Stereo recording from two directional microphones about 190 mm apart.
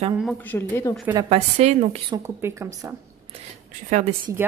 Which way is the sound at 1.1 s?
35° right (ahead or behind).